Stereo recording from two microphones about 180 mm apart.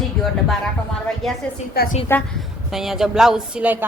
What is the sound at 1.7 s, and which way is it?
Speech, 60° left (ahead or behind).